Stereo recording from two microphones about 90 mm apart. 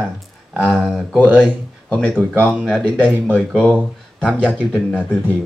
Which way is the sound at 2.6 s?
5° left (ahead or behind).